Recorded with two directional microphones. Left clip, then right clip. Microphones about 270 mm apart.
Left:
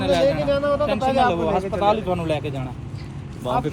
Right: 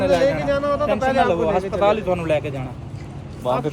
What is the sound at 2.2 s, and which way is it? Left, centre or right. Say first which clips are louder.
Speech: right 4 dB; centre.